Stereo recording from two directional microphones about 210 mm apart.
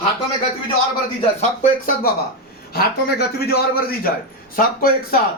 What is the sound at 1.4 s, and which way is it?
Speech, 35° left (ahead or behind).